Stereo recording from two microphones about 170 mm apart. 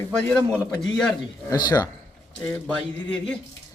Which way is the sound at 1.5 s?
25° left (ahead or behind).